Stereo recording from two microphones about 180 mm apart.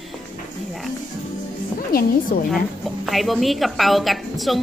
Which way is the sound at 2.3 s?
50° left (ahead or behind).